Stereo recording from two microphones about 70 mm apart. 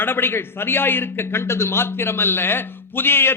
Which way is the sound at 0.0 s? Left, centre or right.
Left.